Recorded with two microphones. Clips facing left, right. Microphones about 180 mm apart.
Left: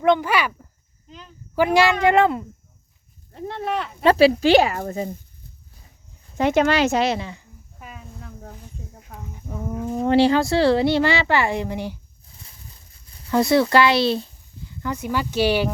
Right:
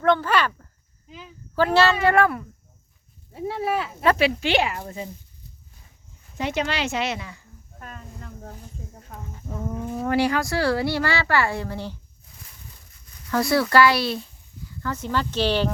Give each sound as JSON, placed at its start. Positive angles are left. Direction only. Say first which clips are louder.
{"t": 0.0, "sound": "speech", "louder": "left 2 dB", "side_deg": 15}
{"t": 1.0, "sound": "a sound", "louder": "right 1 dB", "side_deg": -5}
{"t": 1.5, "sound": "speech", "louder": "left 2 dB", "side_deg": 15}
{"t": 3.3, "sound": "speech", "louder": "right 1 dB", "side_deg": -5}
{"t": 4.0, "sound": "speech", "louder": "left 7 dB", "side_deg": 30}
{"t": 6.3, "sound": "speech", "louder": "left 8 dB", "side_deg": 50}
{"t": 7.8, "sound": "speech", "louder": "even", "side_deg": 5}
{"t": 10.0, "sound": "speech", "louder": "left 6 dB", "side_deg": 25}
{"t": 13.3, "sound": "speech", "louder": "left 3 dB", "side_deg": 20}